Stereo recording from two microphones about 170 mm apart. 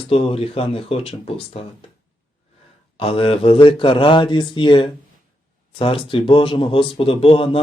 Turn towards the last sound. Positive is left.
turn(degrees=35)  # may be behind; listen again after turning